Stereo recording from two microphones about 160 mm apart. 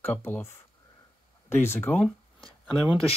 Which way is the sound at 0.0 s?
10° left (ahead or behind).